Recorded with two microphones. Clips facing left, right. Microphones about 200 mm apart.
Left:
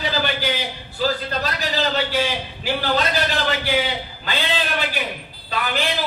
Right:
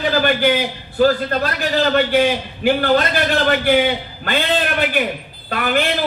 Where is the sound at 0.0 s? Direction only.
50° right (ahead or behind).